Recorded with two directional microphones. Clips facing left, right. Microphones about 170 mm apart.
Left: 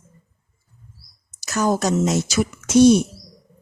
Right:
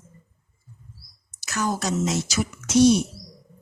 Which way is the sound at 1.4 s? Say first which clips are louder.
Left 6 dB; 40° left (ahead or behind).